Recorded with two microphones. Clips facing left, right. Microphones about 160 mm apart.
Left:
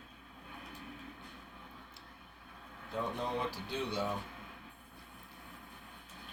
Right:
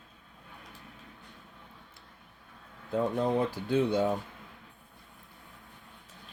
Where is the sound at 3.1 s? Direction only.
50° right (ahead or behind).